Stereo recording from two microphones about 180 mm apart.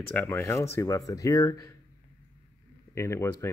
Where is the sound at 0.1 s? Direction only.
15° left (ahead or behind).